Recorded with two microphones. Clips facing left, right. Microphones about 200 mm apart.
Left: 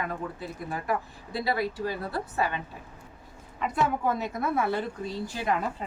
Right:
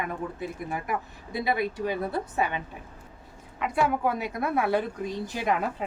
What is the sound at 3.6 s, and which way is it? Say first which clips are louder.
A woman's voice: right 2 dB; 10° right (ahead or behind).